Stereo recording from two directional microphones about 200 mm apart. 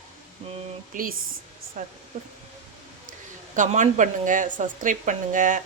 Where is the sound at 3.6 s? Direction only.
40° right (ahead or behind).